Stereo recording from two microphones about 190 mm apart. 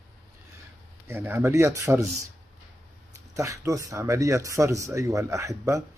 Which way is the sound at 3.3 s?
15° right (ahead or behind).